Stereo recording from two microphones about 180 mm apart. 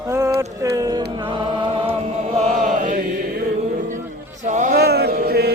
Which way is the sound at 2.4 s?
45° right (ahead or behind).